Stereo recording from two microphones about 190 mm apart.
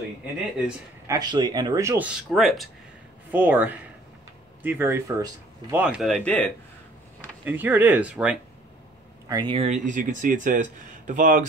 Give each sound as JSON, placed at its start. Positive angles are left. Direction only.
{"t": 1.0, "sound": "speech", "side_deg": -20}
{"t": 7.4, "sound": "speech", "side_deg": -10}
{"t": 9.3, "sound": "speech", "side_deg": -20}
{"t": 9.6, "sound": "speech", "side_deg": -40}